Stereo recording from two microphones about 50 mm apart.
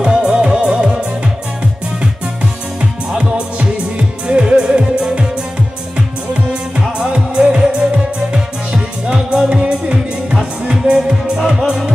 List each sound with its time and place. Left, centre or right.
0.0 s music: centre
2.8 s music: centre
7.1 s music: centre